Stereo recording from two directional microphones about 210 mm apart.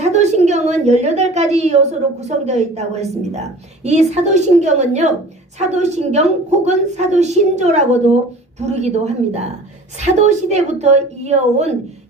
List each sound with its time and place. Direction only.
0.0 s a woman's voice: 35° right (ahead or behind)